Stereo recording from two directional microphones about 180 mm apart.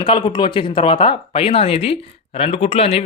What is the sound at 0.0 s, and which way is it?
Speech, 25° left (ahead or behind).